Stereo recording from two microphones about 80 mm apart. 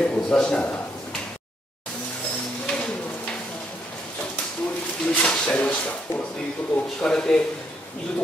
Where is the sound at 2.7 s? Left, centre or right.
Centre.